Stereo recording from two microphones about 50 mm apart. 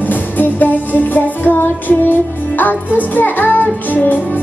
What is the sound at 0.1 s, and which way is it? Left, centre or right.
Music, left.